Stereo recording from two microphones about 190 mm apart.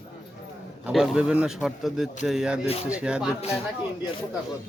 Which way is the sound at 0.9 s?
5° right (ahead or behind).